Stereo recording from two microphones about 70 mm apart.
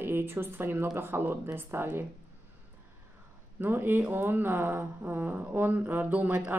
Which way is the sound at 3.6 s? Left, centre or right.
Right.